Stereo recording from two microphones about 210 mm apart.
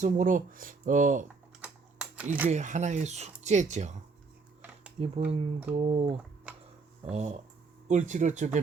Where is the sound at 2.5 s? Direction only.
35° right (ahead or behind).